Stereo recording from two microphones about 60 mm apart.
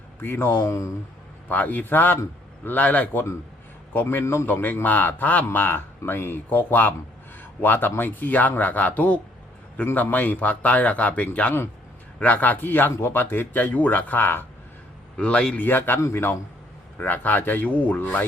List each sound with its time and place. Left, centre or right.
0.2 s speech: left
1.5 s a man's voice: left
5.5 s a man's voice: left
15.2 s a man's voice: centre
15.6 s speech: left
16.0 s a man's voice: left
17.0 s speech: left